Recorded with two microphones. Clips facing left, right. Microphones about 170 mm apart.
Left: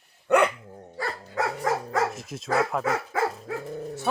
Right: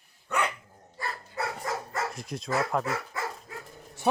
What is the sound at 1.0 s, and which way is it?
Dog, 90° left.